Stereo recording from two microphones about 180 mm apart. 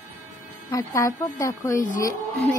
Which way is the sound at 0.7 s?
20° left (ahead or behind).